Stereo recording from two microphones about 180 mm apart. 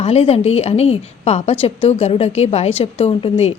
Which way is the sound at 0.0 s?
35° left (ahead or behind).